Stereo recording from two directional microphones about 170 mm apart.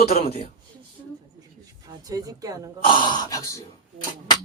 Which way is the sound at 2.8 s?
30° left (ahead or behind).